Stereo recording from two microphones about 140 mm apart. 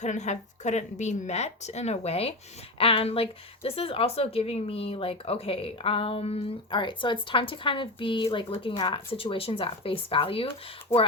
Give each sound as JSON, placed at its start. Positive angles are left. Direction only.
{"t": 0.0, "sound": "a woman's voice", "side_deg": 55}
{"t": 10.9, "sound": "speech", "side_deg": 15}